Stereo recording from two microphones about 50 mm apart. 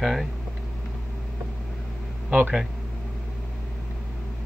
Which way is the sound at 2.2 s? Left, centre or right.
Right.